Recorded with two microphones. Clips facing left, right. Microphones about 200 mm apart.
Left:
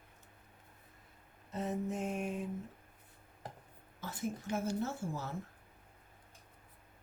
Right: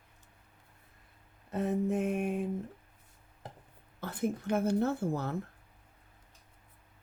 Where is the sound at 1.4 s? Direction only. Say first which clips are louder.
Right 6 dB; 60° right (ahead or behind).